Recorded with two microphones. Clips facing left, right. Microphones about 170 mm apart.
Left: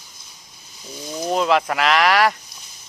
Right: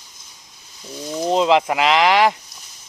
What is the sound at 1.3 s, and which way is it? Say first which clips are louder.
Speech: right 3 dB; 20° right (ahead or behind).